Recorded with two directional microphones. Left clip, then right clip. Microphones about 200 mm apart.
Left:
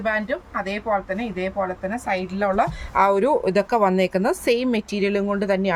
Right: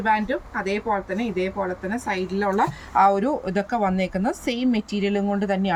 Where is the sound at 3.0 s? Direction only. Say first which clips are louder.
Left 1 dB; 45° left (ahead or behind).